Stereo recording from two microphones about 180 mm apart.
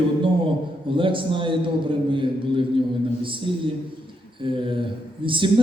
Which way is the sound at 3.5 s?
30° right (ahead or behind).